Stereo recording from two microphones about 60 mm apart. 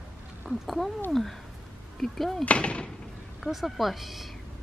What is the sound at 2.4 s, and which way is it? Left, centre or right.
Speech, left.